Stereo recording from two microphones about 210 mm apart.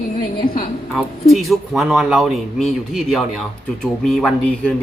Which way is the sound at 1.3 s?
Centre (ahead or behind).